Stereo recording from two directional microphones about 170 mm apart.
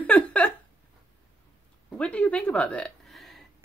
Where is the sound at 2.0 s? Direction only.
5° left (ahead or behind).